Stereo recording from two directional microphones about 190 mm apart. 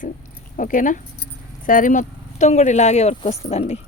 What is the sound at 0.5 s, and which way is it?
Speech, 45° left (ahead or behind).